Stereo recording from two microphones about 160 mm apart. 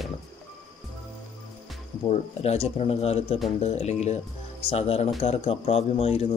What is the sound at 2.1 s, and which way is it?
Speech, 40° left (ahead or behind).